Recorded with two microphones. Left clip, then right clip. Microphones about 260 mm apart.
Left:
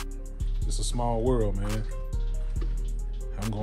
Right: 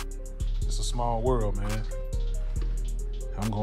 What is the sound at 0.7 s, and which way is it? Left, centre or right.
Speech, centre.